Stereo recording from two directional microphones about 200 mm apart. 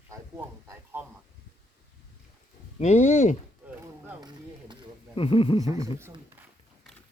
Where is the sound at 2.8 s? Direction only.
35° left (ahead or behind).